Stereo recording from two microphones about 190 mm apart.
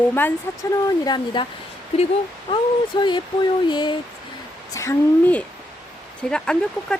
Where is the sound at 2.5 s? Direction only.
25° left (ahead or behind); by 6.9 s 5° left (ahead or behind).